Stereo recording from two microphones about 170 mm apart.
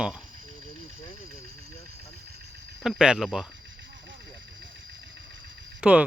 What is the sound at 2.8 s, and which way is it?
Speech, 5° right (ahead or behind).